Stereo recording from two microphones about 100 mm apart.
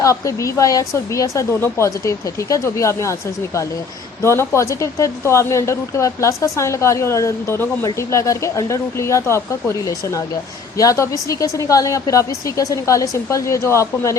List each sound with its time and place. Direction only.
0.0 s a woman's voice: 35° left (ahead or behind)